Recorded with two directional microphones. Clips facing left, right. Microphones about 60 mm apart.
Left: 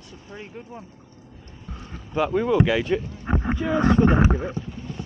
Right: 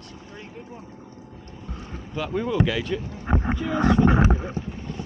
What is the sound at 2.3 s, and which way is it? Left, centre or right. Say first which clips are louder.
Speech: left 3 dB; centre.